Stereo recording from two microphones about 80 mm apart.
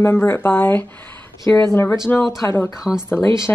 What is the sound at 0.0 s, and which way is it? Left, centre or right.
Speech, left.